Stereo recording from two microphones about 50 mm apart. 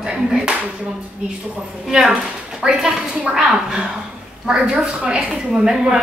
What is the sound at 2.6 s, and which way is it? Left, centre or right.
A woman's voice, centre.